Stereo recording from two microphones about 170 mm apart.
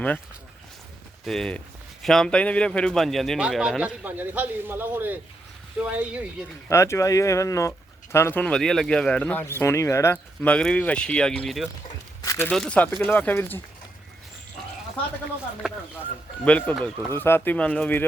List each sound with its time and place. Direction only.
1.2 s speech: centre (ahead or behind)
6.7 s speech: 15° left (ahead or behind); by 11.7 s centre (ahead or behind)
12.2 s a sound: 20° left (ahead or behind)
12.5 s speech: 5° left (ahead or behind)
15.6 s speech: 5° right (ahead or behind)
16.4 s speech: 10° left (ahead or behind)